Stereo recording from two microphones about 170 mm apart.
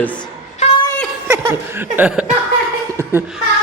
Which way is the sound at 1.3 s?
15° right (ahead or behind).